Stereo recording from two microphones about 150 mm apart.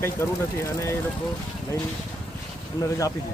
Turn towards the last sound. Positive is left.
turn(degrees=20)  # may be behind; listen again after turning